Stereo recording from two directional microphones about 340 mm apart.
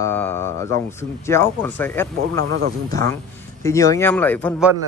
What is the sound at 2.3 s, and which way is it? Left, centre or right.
Speech, right.